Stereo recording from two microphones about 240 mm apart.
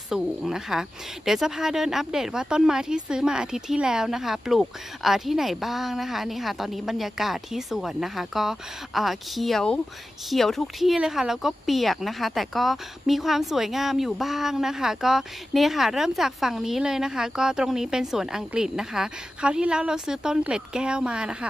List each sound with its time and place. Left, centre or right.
0.1 s speech: centre